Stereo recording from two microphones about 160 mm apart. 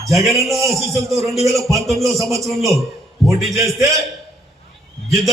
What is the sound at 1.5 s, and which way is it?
Speech, centre (ahead or behind).